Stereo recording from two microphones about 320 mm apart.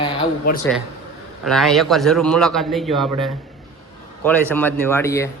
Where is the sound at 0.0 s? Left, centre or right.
Left.